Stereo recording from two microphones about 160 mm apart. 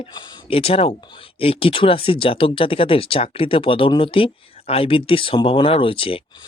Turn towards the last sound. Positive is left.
turn(degrees=35)  # may be behind; listen again after turning